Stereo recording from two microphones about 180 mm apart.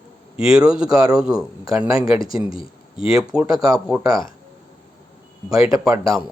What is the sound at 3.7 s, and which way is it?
Speech, 5° right (ahead or behind).